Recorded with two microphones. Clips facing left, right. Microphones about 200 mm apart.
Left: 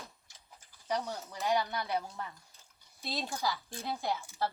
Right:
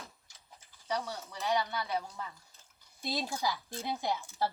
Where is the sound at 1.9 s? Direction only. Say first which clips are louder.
Left 1 dB; centre (ahead or behind).